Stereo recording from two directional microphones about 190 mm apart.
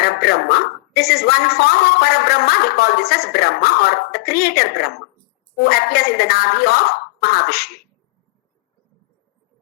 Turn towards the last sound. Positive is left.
turn(degrees=55)  # may be behind; listen again after turning